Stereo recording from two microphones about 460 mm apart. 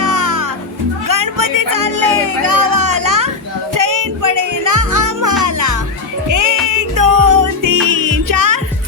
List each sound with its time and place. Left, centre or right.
0.0 s music: right